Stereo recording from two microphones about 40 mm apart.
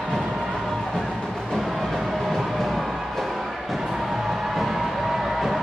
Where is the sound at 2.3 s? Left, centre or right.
Centre.